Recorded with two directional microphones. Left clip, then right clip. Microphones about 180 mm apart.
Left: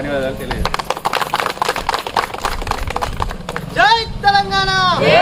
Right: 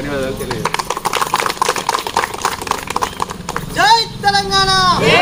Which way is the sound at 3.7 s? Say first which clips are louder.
Right 1 dB; 25° right (ahead or behind).